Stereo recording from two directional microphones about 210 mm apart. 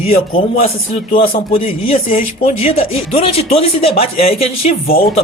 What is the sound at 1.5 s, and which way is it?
Speech, 35° left (ahead or behind).